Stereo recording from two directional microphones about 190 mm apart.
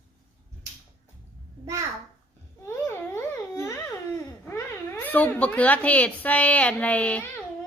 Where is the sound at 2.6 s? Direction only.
15° left (ahead or behind).